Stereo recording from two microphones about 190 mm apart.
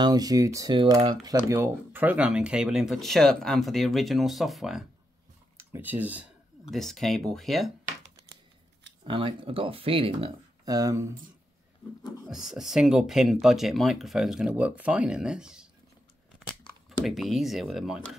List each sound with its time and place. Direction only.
0.0 s speech: 20° right (ahead or behind); by 4.8 s centre (ahead or behind)
5.6 s speech: 10° right (ahead or behind)
6.7 s speech: centre (ahead or behind)
9.0 s speech: 25° right (ahead or behind)
12.0 s speech: centre (ahead or behind)
17.0 s speech: centre (ahead or behind)